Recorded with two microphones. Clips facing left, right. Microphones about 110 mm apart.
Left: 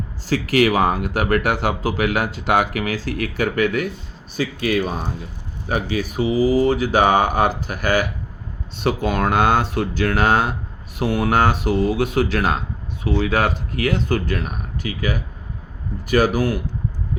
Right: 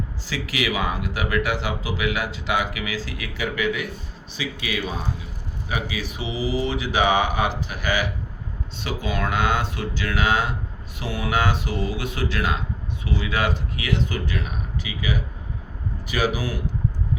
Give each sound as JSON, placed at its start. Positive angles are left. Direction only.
{"t": 0.3, "sound": "speech", "side_deg": 50}